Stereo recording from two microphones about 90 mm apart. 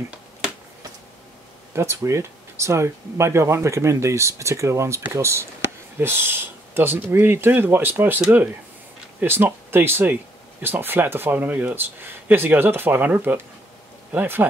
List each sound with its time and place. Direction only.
1.8 s speech: 30° right (ahead or behind)